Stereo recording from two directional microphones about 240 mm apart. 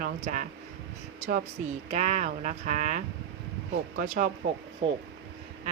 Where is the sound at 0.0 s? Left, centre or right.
Right.